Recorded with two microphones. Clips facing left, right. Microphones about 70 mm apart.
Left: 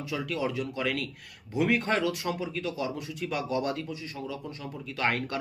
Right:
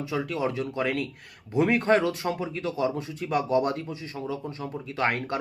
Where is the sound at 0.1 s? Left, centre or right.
Right.